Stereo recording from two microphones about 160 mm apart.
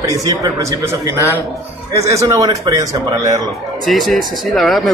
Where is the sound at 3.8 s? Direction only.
Centre (ahead or behind).